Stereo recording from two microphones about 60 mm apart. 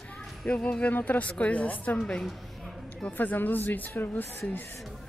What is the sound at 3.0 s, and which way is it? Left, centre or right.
Speech, left.